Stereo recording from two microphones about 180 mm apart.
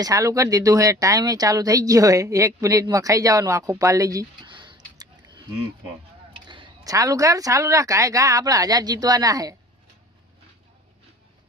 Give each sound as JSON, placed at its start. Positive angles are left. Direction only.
{"t": 0.0, "sound": "speech", "side_deg": -20}
{"t": 6.3, "sound": "speech", "side_deg": -25}